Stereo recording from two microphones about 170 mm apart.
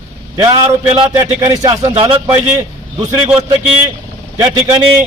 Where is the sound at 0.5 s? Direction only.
30° right (ahead or behind).